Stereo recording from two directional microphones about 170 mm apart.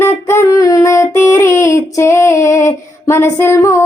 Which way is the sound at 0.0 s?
15° left (ahead or behind).